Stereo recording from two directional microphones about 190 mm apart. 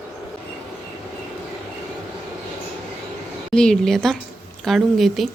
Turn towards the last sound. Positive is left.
turn(degrees=0)  # may be behind; listen again after turning